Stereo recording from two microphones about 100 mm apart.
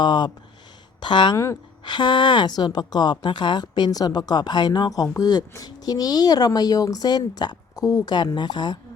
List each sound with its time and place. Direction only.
0.0 s a woman's voice: 50° left (ahead or behind)